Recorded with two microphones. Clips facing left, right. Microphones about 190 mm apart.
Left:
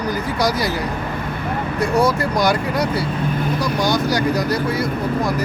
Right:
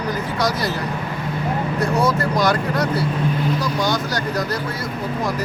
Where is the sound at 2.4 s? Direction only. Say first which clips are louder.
Left 2 dB; 10° left (ahead or behind).